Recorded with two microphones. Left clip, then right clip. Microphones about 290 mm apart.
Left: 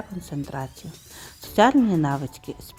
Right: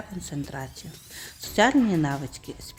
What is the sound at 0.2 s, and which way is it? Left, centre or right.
Speech, centre.